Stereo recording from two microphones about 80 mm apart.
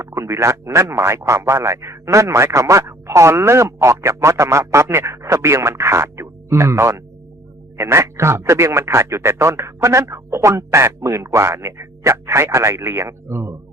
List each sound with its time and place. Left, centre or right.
0.0 s speech: right